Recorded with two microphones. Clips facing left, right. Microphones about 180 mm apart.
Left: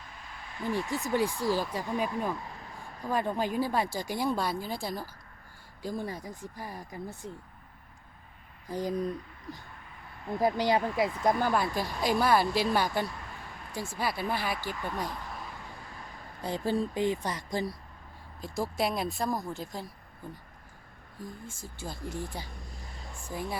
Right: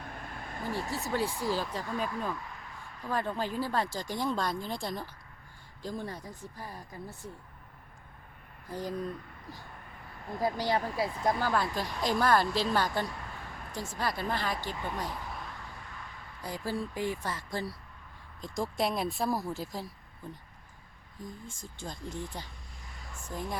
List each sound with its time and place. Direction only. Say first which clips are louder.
0.0 s a sound: right 5 dB; 55° right (ahead or behind); by 1.0 s 40° right (ahead or behind)
1.0 s speech: left 3 dB; 15° left (ahead or behind)
2.5 s a sound: left 2 dB; 35° left (ahead or behind)
3.0 s speech: left 3 dB; 15° left (ahead or behind)
8.7 s speech: left 4 dB; 15° left (ahead or behind)
10.4 s speech: left 4 dB; 20° left (ahead or behind)
16.4 s speech: left 5 dB; 25° left (ahead or behind)
18.3 s speech: left 1 dB; 5° left (ahead or behind)
21.2 s speech: left 1 dB; 5° left (ahead or behind)
23.1 s a sound: left 1 dB; 10° left (ahead or behind)